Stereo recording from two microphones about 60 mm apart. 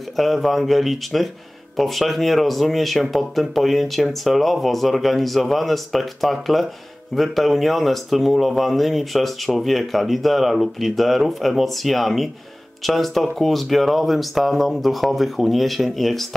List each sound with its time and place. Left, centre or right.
0.1 s speech: centre